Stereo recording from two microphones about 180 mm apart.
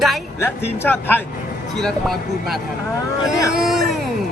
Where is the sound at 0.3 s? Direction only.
10° left (ahead or behind).